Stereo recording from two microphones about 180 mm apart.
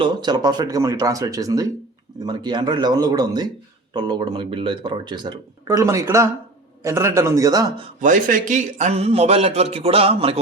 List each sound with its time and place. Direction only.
0.0 s a man's voice: 25° right (ahead or behind)
8.0 s a man's voice: 45° right (ahead or behind)